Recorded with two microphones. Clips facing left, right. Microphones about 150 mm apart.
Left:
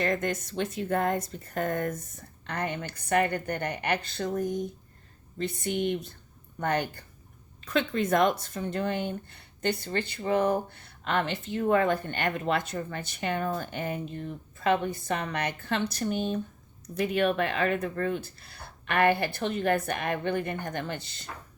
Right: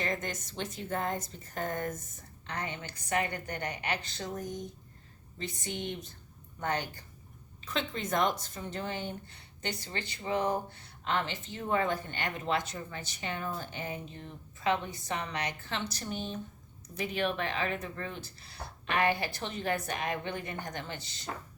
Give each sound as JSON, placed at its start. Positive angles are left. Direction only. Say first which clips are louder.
{"t": 0.0, "sound": "speech", "louder": "left 7 dB", "side_deg": 55}
{"t": 5.4, "sound": "speech", "louder": "left 9 dB", "side_deg": 55}